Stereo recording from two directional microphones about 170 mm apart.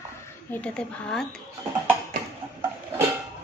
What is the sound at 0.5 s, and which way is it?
Speech, 5° left (ahead or behind).